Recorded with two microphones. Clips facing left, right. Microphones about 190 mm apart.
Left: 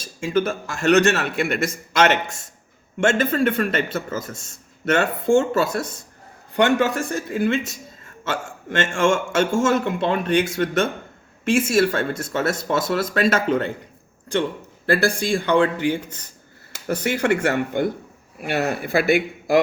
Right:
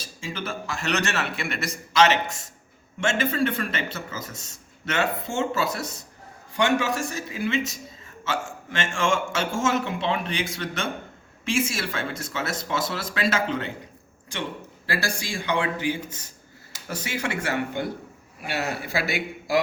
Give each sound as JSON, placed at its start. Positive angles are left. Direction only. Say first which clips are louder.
{"t": 0.0, "sound": "a man's voice", "louder": "left 12 dB", "side_deg": 50}
{"t": 8.8, "sound": "speech", "louder": "left 5 dB", "side_deg": 50}
{"t": 14.8, "sound": "a man's voice", "louder": "left 10 dB", "side_deg": 55}
{"t": 16.9, "sound": "a man's voice", "louder": "left 9 dB", "side_deg": 60}